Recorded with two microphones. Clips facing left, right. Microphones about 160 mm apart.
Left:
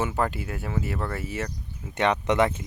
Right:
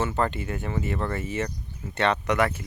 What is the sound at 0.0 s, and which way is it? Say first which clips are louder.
Speech: right 1 dB; 10° left (ahead or behind).